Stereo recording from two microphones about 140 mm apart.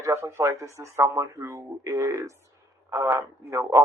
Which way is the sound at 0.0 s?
20° right (ahead or behind).